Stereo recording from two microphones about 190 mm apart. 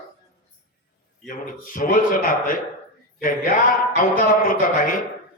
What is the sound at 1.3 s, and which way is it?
Speech, 45° left (ahead or behind).